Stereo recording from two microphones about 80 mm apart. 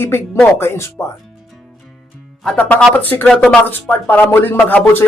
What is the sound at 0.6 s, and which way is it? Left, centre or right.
Speech, left.